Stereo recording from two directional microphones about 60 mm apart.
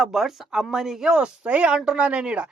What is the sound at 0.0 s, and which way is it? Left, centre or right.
Speech, centre.